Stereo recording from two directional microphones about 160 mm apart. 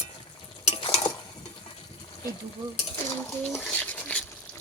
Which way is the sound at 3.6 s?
10° left (ahead or behind).